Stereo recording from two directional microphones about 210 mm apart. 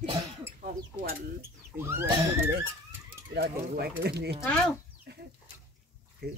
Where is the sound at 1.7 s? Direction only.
10° right (ahead or behind).